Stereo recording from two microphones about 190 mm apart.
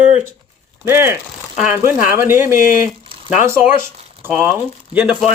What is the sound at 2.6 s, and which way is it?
Speech, 45° left (ahead or behind).